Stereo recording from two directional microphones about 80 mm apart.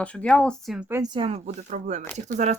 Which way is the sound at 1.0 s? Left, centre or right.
Right.